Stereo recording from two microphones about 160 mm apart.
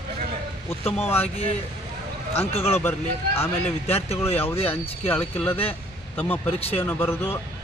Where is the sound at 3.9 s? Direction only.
40° left (ahead or behind).